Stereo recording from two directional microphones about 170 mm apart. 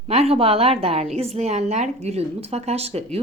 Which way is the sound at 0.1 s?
35° right (ahead or behind).